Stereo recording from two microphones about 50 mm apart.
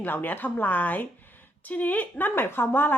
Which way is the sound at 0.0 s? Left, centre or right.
Left.